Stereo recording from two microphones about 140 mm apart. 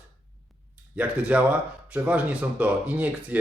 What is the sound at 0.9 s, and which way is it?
Speech, 10° right (ahead or behind).